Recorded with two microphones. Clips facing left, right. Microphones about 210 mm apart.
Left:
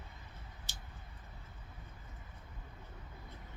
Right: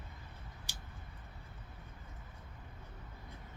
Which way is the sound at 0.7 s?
10° right (ahead or behind).